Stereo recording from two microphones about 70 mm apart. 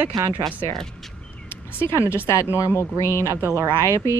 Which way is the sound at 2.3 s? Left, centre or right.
Left.